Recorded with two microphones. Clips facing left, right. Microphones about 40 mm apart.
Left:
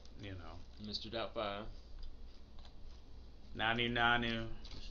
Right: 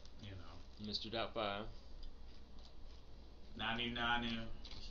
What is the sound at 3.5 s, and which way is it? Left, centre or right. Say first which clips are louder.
Speech: left 6 dB; left.